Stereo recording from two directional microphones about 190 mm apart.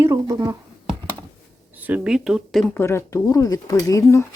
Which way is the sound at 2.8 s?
15° left (ahead or behind).